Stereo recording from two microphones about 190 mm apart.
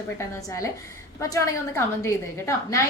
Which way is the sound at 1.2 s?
15° left (ahead or behind).